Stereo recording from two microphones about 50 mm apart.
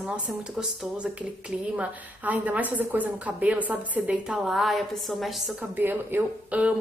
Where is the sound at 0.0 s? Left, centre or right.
Centre.